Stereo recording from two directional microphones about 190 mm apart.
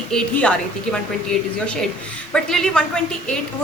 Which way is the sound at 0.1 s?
5° left (ahead or behind).